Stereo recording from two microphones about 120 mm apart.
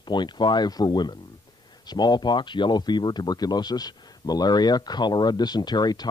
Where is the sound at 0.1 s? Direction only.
40° left (ahead or behind).